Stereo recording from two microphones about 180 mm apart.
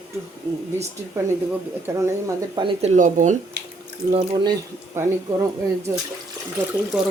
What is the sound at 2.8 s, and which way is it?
Speech, 40° right (ahead or behind).